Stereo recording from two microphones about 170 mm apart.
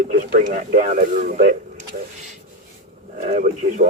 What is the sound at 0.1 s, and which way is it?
Speech, 50° right (ahead or behind).